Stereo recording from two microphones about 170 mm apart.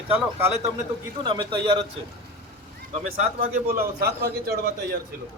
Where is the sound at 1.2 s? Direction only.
25° right (ahead or behind).